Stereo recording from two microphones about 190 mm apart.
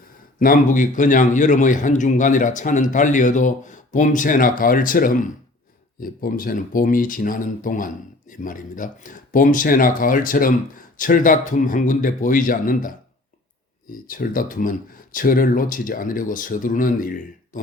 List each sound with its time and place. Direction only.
0.3 s a man's voice: 45° left (ahead or behind)
13.9 s a man's voice: 50° left (ahead or behind)